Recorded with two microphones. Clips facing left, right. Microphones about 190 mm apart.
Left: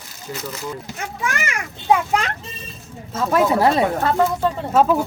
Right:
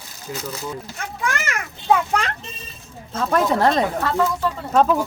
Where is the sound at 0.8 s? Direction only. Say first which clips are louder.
Even; 15° left (ahead or behind).